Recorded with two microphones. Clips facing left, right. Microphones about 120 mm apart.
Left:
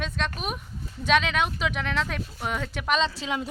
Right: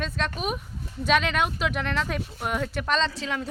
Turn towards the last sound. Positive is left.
turn(degrees=20)  # may be behind; listen again after turning